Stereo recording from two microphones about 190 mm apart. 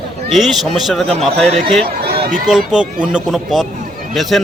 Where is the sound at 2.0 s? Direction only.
55° right (ahead or behind).